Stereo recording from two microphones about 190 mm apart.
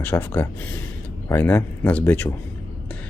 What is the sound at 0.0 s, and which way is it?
Speech, 10° left (ahead or behind).